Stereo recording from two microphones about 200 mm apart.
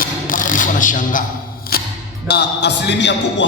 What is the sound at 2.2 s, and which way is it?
Speech, 55° left (ahead or behind).